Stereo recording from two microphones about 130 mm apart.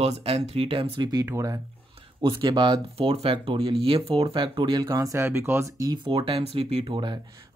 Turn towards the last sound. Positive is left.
turn(degrees=-50)  # may be behind; listen again after turning